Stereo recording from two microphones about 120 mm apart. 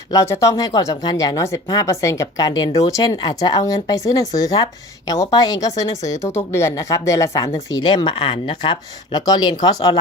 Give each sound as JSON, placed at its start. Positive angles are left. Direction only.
{"t": 0.1, "sound": "speech", "side_deg": 25}
{"t": 7.7, "sound": "speech", "side_deg": 35}